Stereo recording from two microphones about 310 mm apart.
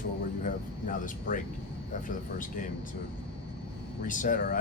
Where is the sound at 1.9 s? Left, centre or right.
Left.